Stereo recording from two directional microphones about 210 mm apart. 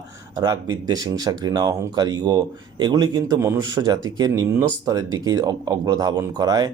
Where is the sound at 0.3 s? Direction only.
20° right (ahead or behind).